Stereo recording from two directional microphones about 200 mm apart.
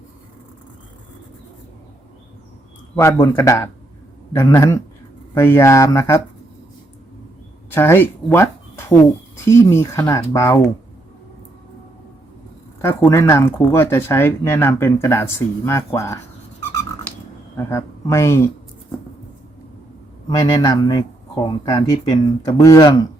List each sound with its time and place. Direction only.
2.9 s speech: 15° left (ahead or behind)
7.7 s speech: 10° left (ahead or behind)
12.8 s speech: 10° left (ahead or behind)
17.6 s speech: 15° left (ahead or behind)
20.3 s speech: 20° left (ahead or behind)